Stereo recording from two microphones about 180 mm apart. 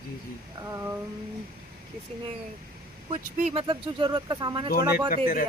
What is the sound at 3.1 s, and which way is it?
Speech, 45° right (ahead or behind).